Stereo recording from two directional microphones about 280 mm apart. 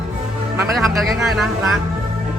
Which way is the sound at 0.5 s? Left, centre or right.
Centre.